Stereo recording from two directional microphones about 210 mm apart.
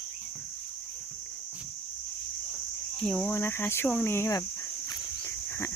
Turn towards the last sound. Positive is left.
turn(degrees=10)  # may be behind; listen again after turning